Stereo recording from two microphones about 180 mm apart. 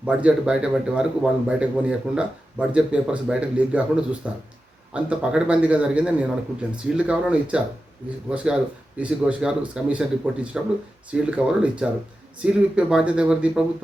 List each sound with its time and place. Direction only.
0.0 s a man's voice: 5° right (ahead or behind)